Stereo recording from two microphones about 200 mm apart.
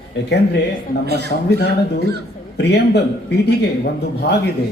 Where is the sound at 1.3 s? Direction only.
50° left (ahead or behind).